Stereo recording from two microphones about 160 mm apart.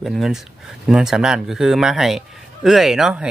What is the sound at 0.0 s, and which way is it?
A man's voice, centre (ahead or behind).